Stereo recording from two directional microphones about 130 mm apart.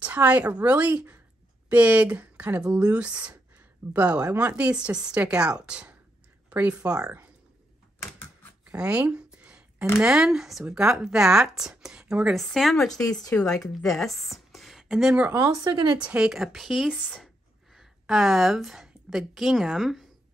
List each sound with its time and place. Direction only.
0.0 s speech: 10° right (ahead or behind)
8.6 s a sound: 10° right (ahead or behind)
9.9 s speech: 5° right (ahead or behind)
15.6 s a woman's voice: 35° right (ahead or behind)
16.0 s a woman's voice: 10° right (ahead or behind)